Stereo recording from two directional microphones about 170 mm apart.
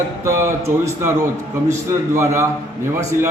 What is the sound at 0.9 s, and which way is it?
A man's voice, 15° right (ahead or behind).